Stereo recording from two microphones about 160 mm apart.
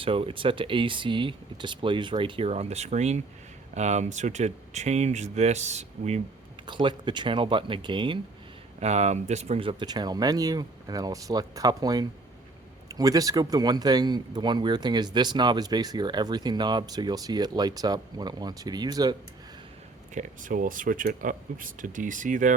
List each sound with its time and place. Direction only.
0.0 s speech: 35° right (ahead or behind)
6.7 s speech: 30° right (ahead or behind)
8.8 s speech: 45° right (ahead or behind); by 19.1 s 25° right (ahead or behind)
20.1 s speech: 55° right (ahead or behind)